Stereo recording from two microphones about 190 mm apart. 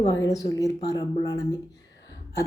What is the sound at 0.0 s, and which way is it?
A woman's voice, 15° left (ahead or behind).